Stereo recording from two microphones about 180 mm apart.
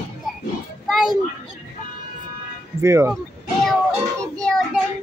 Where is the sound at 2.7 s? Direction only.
15° right (ahead or behind).